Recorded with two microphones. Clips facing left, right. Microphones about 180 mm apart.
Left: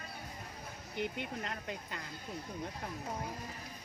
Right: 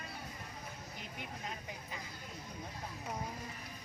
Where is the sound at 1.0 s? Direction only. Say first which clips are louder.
Left 11 dB; 70° left (ahead or behind).